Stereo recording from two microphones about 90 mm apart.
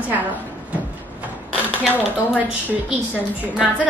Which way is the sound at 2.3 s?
15° right (ahead or behind).